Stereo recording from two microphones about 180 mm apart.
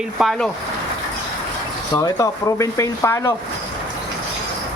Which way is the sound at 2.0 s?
20° left (ahead or behind).